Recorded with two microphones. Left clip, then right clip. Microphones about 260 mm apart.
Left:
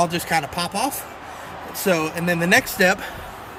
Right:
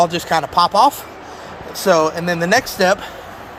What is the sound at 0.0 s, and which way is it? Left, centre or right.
Speech, centre.